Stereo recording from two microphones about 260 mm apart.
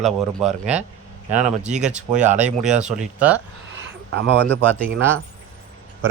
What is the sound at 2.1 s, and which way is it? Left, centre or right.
Speech, right.